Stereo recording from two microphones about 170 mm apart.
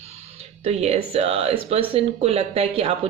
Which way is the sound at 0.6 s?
35° right (ahead or behind).